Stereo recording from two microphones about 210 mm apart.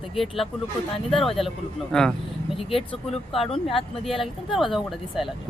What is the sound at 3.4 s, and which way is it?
Speech, 25° left (ahead or behind).